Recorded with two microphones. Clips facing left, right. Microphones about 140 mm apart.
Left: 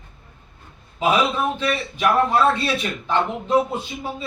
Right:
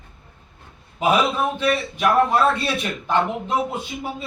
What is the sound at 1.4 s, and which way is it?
A man's voice, centre (ahead or behind).